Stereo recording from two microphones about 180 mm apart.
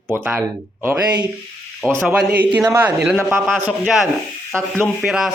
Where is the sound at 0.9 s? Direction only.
20° right (ahead or behind).